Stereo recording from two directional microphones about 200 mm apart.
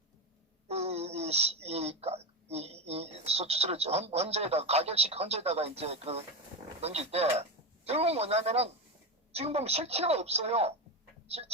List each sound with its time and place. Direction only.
0.7 s speech: 30° right (ahead or behind)